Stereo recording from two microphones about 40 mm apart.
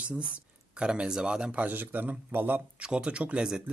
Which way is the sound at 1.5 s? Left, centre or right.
Right.